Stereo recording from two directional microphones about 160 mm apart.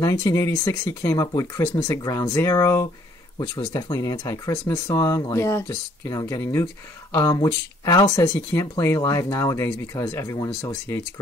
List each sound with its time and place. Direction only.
0.0 s speech: 20° left (ahead or behind)